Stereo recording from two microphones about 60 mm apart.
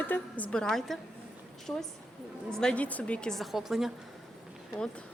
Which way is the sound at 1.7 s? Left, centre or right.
Left.